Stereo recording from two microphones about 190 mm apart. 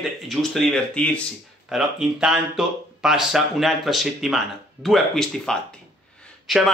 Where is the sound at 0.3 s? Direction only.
Centre (ahead or behind).